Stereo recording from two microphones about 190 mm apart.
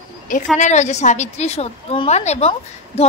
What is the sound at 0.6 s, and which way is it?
A woman's voice, 40° left (ahead or behind).